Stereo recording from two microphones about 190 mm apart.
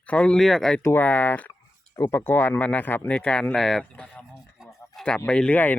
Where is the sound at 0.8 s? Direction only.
10° left (ahead or behind).